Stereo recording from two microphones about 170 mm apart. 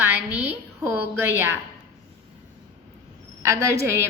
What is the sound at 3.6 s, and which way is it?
Speech, 15° right (ahead or behind).